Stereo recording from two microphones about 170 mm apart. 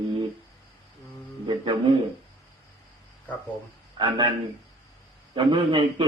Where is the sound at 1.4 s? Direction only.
30° right (ahead or behind).